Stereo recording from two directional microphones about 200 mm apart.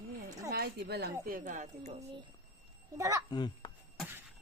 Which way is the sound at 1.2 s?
40° right (ahead or behind).